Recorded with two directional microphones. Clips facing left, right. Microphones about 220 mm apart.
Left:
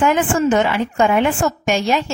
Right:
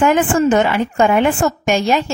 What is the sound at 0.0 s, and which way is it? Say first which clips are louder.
A woman's voice: right 3 dB; 45° right (ahead or behind).